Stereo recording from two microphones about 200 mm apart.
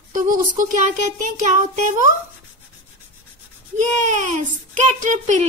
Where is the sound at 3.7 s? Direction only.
40° right (ahead or behind).